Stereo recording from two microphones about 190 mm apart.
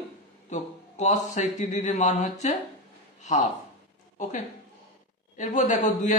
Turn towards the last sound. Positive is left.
turn(degrees=40)  # may be behind; listen again after turning